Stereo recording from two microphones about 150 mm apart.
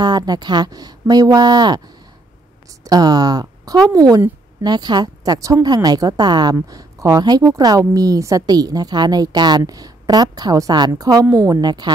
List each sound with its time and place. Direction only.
0.0 s a woman's voice: 25° right (ahead or behind)
2.8 s a woman's voice: 25° right (ahead or behind)